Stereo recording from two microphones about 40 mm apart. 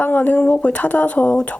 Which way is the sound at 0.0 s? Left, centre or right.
Left.